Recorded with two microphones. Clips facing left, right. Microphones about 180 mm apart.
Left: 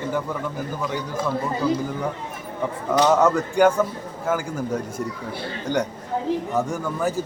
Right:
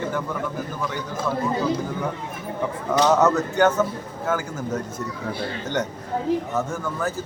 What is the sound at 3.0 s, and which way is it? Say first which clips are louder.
A man's voice: even; 10° left (ahead or behind).